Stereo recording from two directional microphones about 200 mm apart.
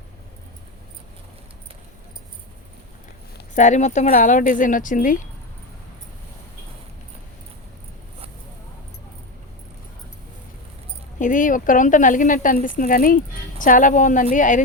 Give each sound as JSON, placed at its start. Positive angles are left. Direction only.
{"t": 3.5, "sound": "speech", "side_deg": 35}
{"t": 11.2, "sound": "speech", "side_deg": 40}